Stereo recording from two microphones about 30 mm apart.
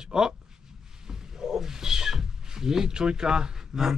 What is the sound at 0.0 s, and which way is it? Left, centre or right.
Speech, right.